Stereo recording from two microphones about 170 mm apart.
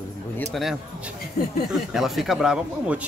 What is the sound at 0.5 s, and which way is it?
Speech, centre (ahead or behind).